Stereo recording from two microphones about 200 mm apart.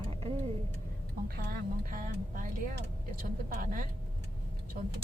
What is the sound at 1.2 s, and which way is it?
Speech, 50° right (ahead or behind).